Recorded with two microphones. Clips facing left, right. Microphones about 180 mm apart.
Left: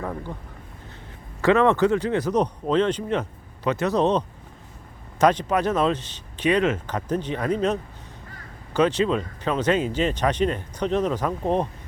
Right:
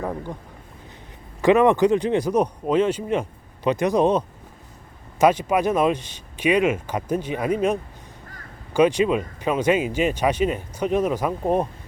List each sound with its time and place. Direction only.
0.0 s speech: 15° right (ahead or behind)
1.4 s speech: 15° right (ahead or behind)
5.2 s speech: 10° right (ahead or behind)